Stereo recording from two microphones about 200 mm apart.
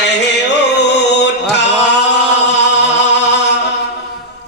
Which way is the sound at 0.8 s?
60° left (ahead or behind).